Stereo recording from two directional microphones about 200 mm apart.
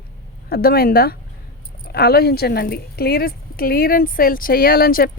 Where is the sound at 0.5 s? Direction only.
50° left (ahead or behind).